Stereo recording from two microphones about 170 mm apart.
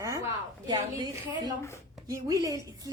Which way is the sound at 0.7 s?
25° right (ahead or behind).